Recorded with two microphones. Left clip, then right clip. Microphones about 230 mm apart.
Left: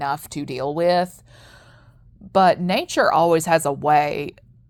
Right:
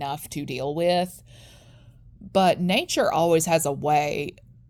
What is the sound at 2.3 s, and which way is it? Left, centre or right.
Speech, centre.